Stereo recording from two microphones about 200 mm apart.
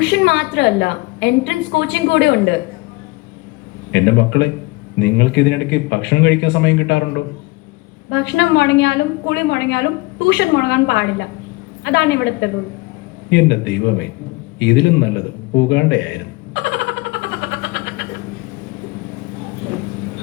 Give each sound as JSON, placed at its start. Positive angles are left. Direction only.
{"t": 0.0, "sound": "a woman's voice", "side_deg": 60}
{"t": 3.9, "sound": "a woman's voice", "side_deg": 60}
{"t": 8.1, "sound": "a woman's voice", "side_deg": 60}
{"t": 14.6, "sound": "a sound", "side_deg": 60}